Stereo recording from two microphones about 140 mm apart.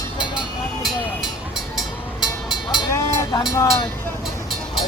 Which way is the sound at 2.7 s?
25° left (ahead or behind).